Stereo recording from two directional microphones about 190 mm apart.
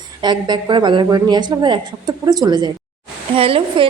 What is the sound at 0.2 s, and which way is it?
A woman's voice, 25° right (ahead or behind).